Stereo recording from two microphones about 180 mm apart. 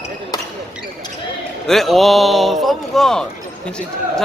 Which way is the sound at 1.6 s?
Centre (ahead or behind).